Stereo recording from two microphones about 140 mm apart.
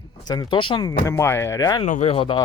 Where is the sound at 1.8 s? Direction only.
55° left (ahead or behind); by 2.4 s 40° left (ahead or behind).